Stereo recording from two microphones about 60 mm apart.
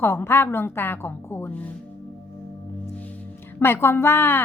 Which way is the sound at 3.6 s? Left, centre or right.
Left.